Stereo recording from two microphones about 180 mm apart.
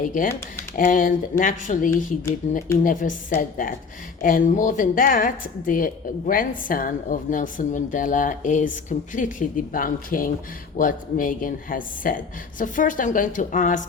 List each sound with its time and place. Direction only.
0.0 s a woman's voice: 45° left (ahead or behind)